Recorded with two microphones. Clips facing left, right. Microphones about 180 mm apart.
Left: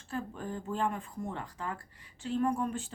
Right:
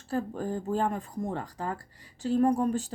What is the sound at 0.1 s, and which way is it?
Speech, 35° right (ahead or behind).